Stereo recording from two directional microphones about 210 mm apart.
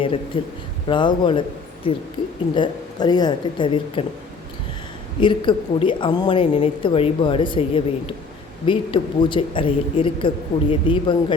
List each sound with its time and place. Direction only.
0.3 s speech: 25° left (ahead or behind)
5.2 s speech: 25° left (ahead or behind)